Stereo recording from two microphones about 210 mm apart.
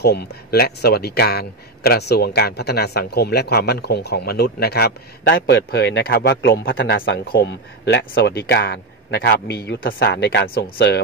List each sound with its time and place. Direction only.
0.0 s a man's voice: 50° left (ahead or behind)